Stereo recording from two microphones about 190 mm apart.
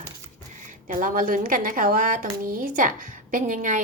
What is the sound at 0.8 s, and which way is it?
A woman's voice, 45° right (ahead or behind).